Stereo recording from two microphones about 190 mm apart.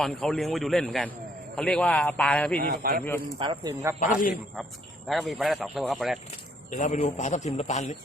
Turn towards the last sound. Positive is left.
turn(degrees=35)  # may be behind; listen again after turning